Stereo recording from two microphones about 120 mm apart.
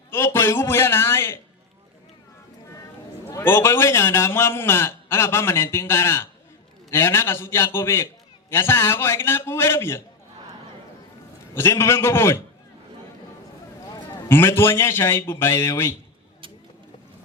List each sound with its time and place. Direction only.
0.1 s a man's voice: 20° left (ahead or behind)
3.3 s a man's voice: 20° left (ahead or behind)
11.5 s a man's voice: 20° left (ahead or behind)
14.3 s a man's voice: 20° left (ahead or behind)